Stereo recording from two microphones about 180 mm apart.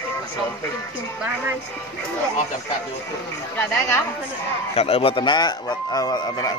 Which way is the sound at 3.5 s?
15° left (ahead or behind).